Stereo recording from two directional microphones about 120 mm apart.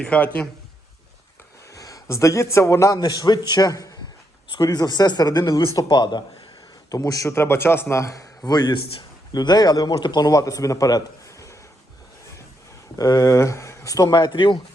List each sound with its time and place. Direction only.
0.0 s speech: 10° left (ahead or behind)
1.7 s a man's voice: 30° left (ahead or behind)
13.0 s a man's voice: 30° left (ahead or behind)